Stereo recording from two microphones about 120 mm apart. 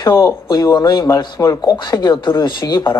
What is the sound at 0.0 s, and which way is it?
Speech, 30° left (ahead or behind).